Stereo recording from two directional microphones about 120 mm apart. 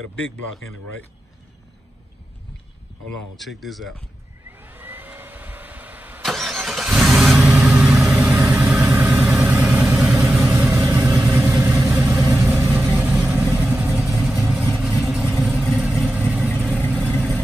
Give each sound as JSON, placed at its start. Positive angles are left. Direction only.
{"t": 3.3, "sound": "speech", "side_deg": 0}
{"t": 4.5, "sound": "vehicle", "side_deg": -15}
{"t": 6.2, "sound": "vehicle", "side_deg": 0}
{"t": 10.7, "sound": "vehicle", "side_deg": -20}
{"t": 14.1, "sound": "vehicle", "side_deg": 0}